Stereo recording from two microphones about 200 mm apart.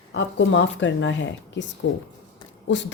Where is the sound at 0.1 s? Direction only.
65° left (ahead or behind).